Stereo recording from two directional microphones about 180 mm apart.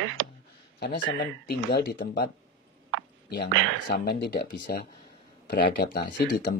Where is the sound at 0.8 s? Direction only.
65° left (ahead or behind).